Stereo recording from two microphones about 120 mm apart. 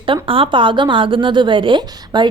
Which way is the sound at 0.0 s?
45° right (ahead or behind).